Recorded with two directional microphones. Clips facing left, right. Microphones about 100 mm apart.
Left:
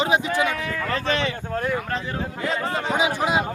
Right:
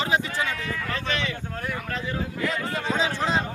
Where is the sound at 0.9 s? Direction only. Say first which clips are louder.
Left 6 dB; 40° left (ahead or behind).